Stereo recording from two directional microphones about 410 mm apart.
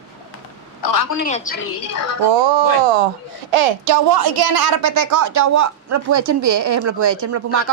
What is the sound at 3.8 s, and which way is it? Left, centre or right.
A woman's voice, right.